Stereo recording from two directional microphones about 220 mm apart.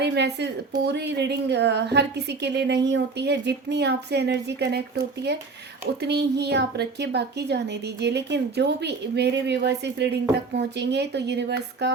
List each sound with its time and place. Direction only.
0.0 s a woman's voice: 50° right (ahead or behind)